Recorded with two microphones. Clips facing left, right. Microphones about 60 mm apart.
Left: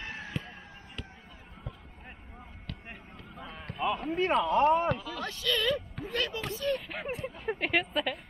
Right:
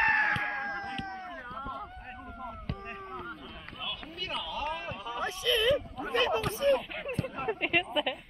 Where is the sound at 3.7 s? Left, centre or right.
Left.